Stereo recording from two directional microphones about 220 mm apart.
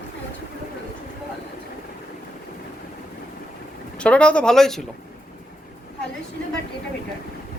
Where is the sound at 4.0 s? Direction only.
5° left (ahead or behind).